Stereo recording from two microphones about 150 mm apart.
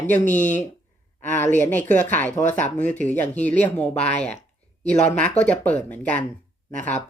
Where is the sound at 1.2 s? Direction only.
10° left (ahead or behind).